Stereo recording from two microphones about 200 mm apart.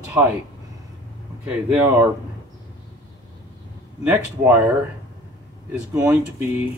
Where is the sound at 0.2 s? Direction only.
10° right (ahead or behind).